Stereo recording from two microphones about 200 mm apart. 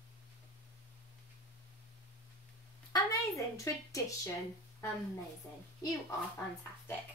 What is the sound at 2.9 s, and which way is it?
Speech, 15° left (ahead or behind).